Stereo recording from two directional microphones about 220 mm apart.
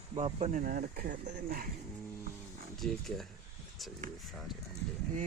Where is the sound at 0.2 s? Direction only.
30° right (ahead or behind).